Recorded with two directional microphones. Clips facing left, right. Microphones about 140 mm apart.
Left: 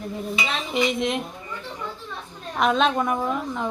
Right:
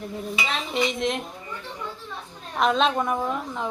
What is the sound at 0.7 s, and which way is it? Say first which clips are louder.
Speech: left 2 dB; centre (ahead or behind).